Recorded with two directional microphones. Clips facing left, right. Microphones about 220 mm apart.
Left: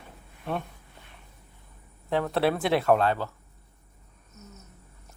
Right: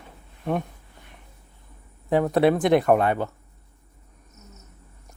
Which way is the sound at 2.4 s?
15° right (ahead or behind).